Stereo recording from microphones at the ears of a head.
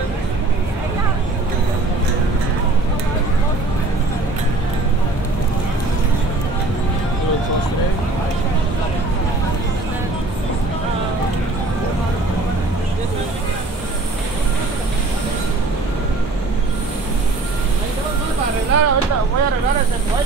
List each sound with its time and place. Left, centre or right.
18.4 s vehicle: right